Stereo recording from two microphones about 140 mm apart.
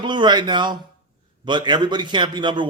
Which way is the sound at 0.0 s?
35° right (ahead or behind).